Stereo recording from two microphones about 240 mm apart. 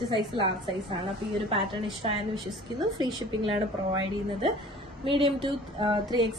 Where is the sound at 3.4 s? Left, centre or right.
Right.